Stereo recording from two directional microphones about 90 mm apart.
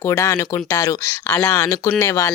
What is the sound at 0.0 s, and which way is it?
Speech, 30° left (ahead or behind).